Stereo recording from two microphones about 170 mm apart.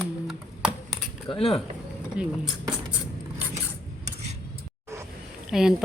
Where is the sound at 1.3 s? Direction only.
35° left (ahead or behind).